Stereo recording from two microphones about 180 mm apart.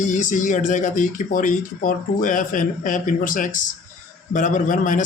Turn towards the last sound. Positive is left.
turn(degrees=45)  # may be behind; listen again after turning